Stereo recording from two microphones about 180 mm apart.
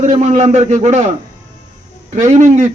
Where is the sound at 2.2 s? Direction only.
45° right (ahead or behind).